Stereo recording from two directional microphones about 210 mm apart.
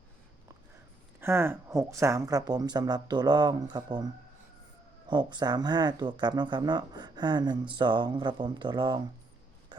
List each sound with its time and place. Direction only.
1.2 s speech: 10° right (ahead or behind)